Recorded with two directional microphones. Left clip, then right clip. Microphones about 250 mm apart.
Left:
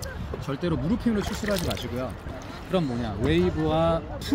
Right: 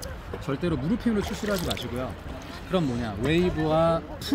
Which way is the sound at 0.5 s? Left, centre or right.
Centre.